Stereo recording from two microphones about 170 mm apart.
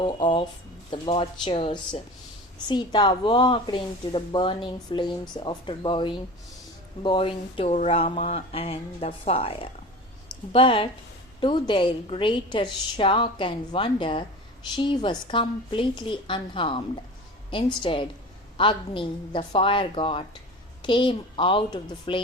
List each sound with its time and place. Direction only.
0.0 s a woman's voice: 30° left (ahead or behind)